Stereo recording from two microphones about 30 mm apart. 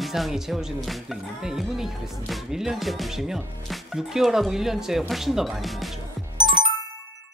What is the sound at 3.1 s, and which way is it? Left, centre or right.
Speech, centre.